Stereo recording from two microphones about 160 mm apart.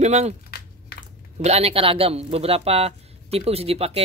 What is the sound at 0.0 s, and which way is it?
Speech, 45° right (ahead or behind).